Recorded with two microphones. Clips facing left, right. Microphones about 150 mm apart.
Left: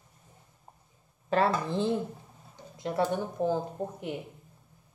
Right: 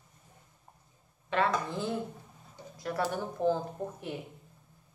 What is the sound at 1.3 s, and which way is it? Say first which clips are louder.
Speech: left 3 dB; 35° left (ahead or behind).